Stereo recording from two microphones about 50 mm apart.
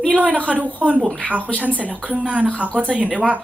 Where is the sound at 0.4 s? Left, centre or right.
Right.